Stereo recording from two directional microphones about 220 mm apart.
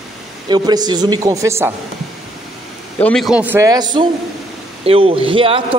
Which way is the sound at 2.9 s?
5° left (ahead or behind).